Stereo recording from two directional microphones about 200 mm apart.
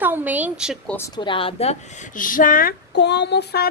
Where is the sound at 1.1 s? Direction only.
25° left (ahead or behind).